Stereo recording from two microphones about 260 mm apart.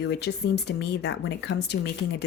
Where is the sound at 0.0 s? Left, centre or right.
Left.